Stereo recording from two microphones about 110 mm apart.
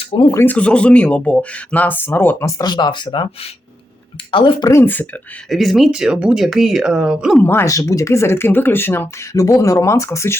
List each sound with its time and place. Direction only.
0.1 s speech: 50° left (ahead or behind)
0.4 s speech: 10° left (ahead or behind)
2.6 s speech: 40° left (ahead or behind)
4.3 s speech: 50° left (ahead or behind)
4.6 s speech: 25° left (ahead or behind)
5.5 s speech: centre (ahead or behind)
7.3 s speech: 20° left (ahead or behind)
9.3 s speech: 30° left (ahead or behind)